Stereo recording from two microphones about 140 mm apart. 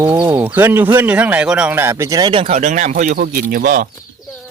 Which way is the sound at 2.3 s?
40° right (ahead or behind).